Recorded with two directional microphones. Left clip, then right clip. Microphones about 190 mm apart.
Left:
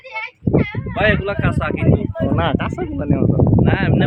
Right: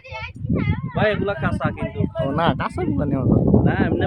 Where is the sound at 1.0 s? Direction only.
35° left (ahead or behind).